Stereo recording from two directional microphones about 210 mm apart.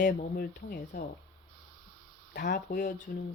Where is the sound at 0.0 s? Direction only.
40° left (ahead or behind).